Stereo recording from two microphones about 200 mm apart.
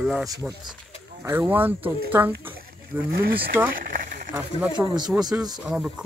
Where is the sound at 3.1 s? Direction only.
50° right (ahead or behind).